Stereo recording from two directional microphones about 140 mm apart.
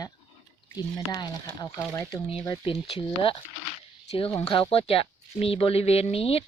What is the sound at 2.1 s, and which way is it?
Speech, 35° left (ahead or behind).